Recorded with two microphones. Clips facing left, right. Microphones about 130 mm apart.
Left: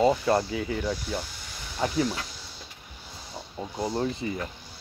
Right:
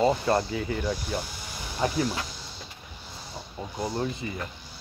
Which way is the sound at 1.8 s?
5° right (ahead or behind).